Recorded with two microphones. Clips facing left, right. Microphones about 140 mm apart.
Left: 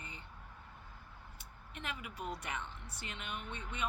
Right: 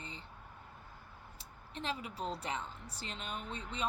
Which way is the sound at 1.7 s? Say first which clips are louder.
Right 5 dB; 30° right (ahead or behind).